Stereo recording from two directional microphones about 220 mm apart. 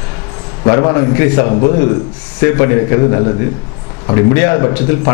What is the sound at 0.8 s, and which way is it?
Speech, 20° left (ahead or behind).